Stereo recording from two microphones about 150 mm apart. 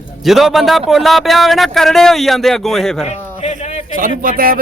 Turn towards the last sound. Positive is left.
turn(degrees=-70)  # may be behind; listen again after turning